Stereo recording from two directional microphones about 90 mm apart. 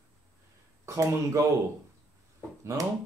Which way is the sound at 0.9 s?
35° right (ahead or behind).